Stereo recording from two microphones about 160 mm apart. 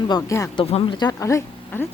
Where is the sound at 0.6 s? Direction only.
35° left (ahead or behind); by 1.8 s 20° left (ahead or behind).